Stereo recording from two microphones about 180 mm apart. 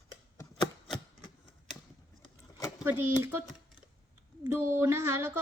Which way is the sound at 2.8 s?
10° right (ahead or behind).